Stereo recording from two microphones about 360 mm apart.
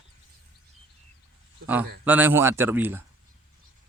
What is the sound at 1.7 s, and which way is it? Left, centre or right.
Speech, centre.